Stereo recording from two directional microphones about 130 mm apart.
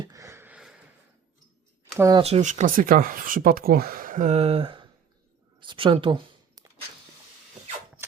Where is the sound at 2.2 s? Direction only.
55° right (ahead or behind); by 5.9 s 40° right (ahead or behind).